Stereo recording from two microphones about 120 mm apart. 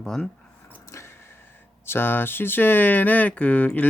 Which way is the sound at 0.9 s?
25° left (ahead or behind).